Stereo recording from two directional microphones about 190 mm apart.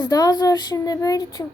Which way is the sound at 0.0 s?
20° left (ahead or behind).